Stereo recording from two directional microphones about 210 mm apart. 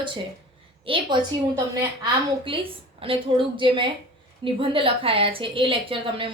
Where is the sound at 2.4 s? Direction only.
25° right (ahead or behind).